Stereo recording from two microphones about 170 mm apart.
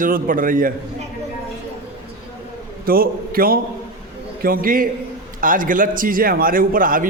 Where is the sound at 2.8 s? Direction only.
60° right (ahead or behind).